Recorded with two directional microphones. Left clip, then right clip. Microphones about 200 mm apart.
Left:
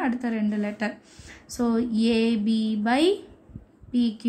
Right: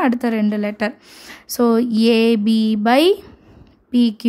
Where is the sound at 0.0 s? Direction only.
45° right (ahead or behind).